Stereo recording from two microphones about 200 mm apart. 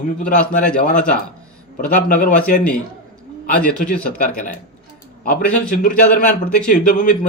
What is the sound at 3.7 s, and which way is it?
Speech, 5° left (ahead or behind).